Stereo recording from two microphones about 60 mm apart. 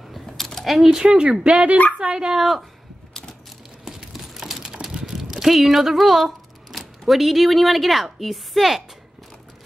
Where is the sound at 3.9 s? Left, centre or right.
Centre.